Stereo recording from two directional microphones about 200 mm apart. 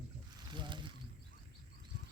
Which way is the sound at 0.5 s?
25° right (ahead or behind).